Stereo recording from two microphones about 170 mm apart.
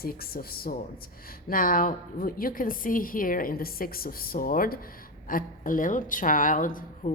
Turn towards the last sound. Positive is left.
turn(degrees=50)  # may be behind; listen again after turning